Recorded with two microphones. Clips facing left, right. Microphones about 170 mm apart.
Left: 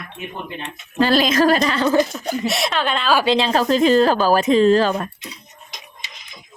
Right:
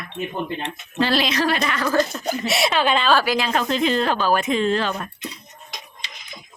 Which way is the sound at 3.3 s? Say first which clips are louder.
Left 5 dB; 30° left (ahead or behind).